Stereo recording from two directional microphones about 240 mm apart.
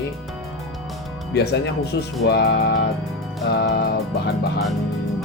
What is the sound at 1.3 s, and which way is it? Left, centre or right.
Music, left.